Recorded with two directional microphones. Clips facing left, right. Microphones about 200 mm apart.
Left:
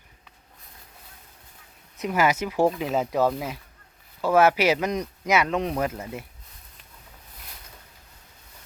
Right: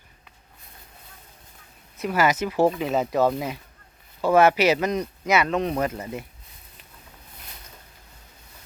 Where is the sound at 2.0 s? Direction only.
15° left (ahead or behind).